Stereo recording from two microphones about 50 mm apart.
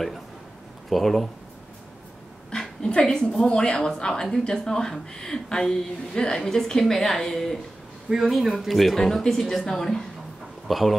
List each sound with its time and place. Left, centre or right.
0.8 s speech: centre
2.5 s a woman's voice: centre
8.1 s speech: centre